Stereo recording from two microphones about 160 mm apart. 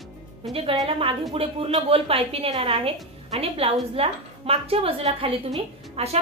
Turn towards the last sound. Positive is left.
turn(degrees=-40)  # may be behind; listen again after turning